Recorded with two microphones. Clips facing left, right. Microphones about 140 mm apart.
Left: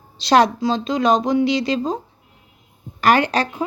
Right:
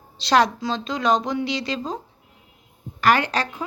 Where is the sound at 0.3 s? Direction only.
15° left (ahead or behind).